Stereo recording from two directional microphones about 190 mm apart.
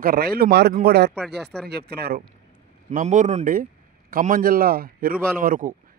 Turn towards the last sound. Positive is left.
turn(degrees=-45)  # may be behind; listen again after turning